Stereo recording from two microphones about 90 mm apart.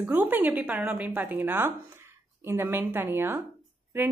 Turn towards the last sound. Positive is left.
turn(degrees=-20)  # may be behind; listen again after turning